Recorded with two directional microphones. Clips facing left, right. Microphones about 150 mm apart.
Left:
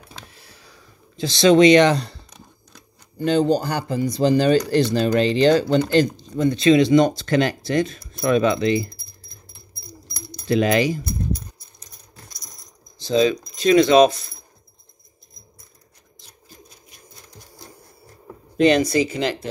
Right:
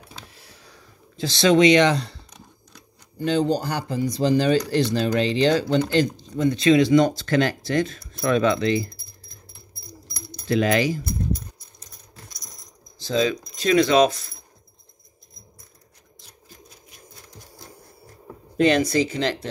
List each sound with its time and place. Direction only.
0.3 s a sound: centre (ahead or behind)
1.1 s speech: 20° left (ahead or behind)
1.5 s speech: 35° left (ahead or behind)
3.2 s speech: 50° left (ahead or behind)
6.4 s speech: 30° left (ahead or behind)
10.4 s speech: 20° left (ahead or behind)
13.0 s keys jangling: 20° left (ahead or behind)
18.6 s speech: 15° left (ahead or behind)